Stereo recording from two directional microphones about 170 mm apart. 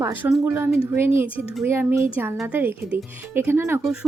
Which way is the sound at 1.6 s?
15° right (ahead or behind).